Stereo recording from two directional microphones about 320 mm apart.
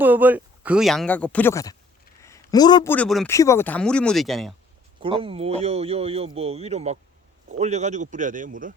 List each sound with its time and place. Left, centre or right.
0.0 s speech: centre
5.0 s speech: centre